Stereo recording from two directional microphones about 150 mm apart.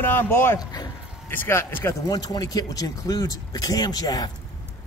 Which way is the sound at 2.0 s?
25° left (ahead or behind).